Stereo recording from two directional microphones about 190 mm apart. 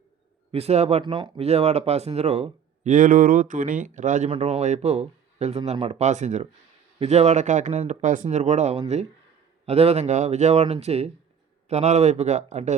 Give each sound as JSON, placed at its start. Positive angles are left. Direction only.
{"t": 0.5, "sound": "speech", "side_deg": -35}